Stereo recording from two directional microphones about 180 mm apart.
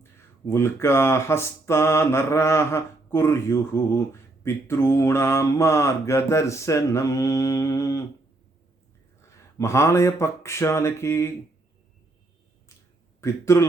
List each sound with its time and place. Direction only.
0.4 s speech: 15° left (ahead or behind)
9.6 s speech: 15° left (ahead or behind)
13.2 s speech: 15° left (ahead or behind)